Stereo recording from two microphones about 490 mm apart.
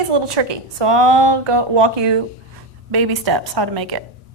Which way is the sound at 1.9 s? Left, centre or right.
Right.